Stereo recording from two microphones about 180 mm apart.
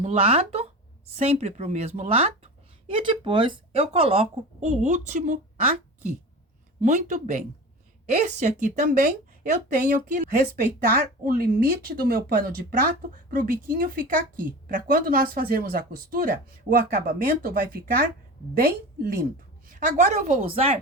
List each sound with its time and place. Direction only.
0.0 s speech: 35° right (ahead or behind)